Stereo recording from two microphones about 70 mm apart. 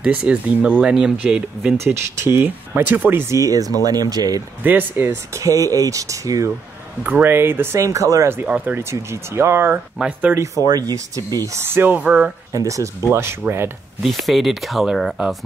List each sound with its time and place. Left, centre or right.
0.1 s speech: centre
1.9 s speech: right
3.3 s speech: right
4.6 s speech: right
5.3 s speech: right
7.0 s speech: right
7.8 s speech: right
8.5 s speech: centre
8.9 s speech: right
9.7 s speech: centre
10.6 s speech: right
11.5 s speech: right
12.5 s speech: right
14.0 s speech: centre